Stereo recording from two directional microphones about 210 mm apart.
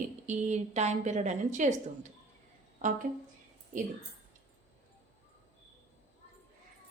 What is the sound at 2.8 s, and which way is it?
Speech, 35° right (ahead or behind).